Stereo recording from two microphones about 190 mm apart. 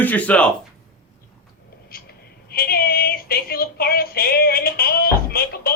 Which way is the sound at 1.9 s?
50° left (ahead or behind).